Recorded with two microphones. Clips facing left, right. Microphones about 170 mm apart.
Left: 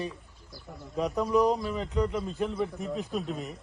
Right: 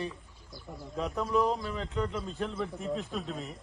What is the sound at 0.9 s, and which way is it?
A man's voice, 15° left (ahead or behind).